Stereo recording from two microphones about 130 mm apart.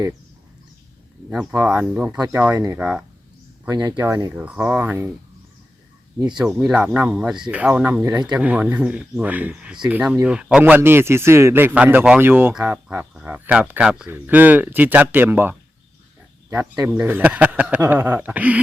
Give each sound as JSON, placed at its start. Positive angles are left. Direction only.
{"t": 1.3, "sound": "speech", "side_deg": -5}
{"t": 3.7, "sound": "speech", "side_deg": -30}
{"t": 6.3, "sound": "speech", "side_deg": -5}
{"t": 16.8, "sound": "speech", "side_deg": -15}